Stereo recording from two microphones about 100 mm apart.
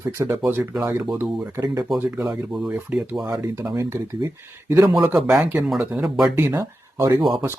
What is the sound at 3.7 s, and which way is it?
Speech, 30° right (ahead or behind).